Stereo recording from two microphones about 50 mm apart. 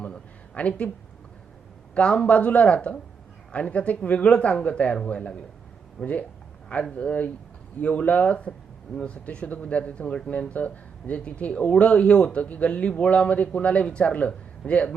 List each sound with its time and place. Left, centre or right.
0.6 s speech: left
2.0 s speech: centre